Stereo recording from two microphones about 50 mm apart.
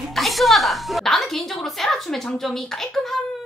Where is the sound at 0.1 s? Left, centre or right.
Centre.